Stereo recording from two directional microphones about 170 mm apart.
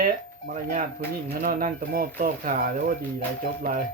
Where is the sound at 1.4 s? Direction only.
60° right (ahead or behind).